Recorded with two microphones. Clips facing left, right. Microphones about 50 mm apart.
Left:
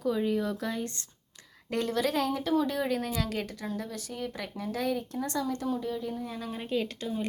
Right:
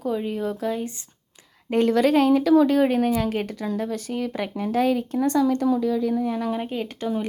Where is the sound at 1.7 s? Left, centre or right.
Right.